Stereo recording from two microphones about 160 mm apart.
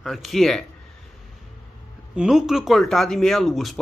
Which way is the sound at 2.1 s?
5° right (ahead or behind).